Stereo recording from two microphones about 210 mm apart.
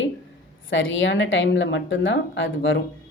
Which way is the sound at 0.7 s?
65° left (ahead or behind).